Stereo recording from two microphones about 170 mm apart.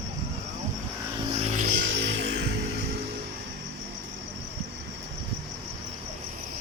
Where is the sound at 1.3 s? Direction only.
40° right (ahead or behind).